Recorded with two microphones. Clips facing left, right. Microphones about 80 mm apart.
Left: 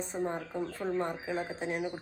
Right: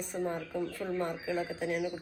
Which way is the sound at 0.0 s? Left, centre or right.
Left.